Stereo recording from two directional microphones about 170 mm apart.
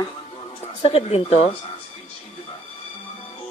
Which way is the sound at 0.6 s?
35° left (ahead or behind).